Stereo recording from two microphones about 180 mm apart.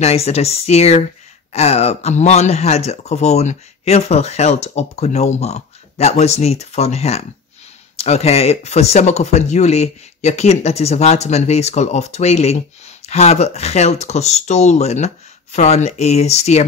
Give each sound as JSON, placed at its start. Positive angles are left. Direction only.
{"t": 0.0, "sound": "speech", "side_deg": 35}